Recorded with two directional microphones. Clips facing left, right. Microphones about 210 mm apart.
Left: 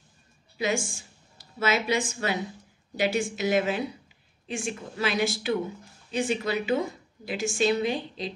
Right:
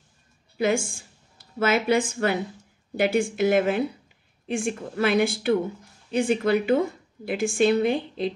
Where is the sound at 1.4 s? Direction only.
55° right (ahead or behind).